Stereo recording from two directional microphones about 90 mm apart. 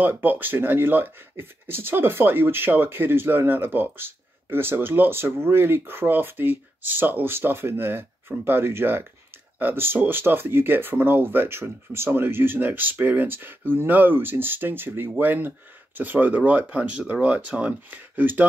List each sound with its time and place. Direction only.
0.0 s speech: 20° right (ahead or behind)